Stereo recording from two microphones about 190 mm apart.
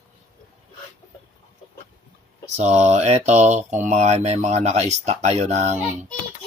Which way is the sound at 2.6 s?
35° right (ahead or behind).